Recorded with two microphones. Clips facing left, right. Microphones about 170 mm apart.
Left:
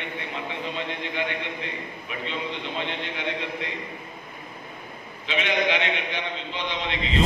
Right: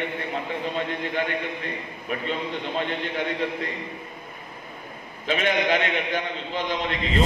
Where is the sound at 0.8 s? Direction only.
45° right (ahead or behind).